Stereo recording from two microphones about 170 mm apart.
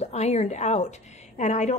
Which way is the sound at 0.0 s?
40° left (ahead or behind).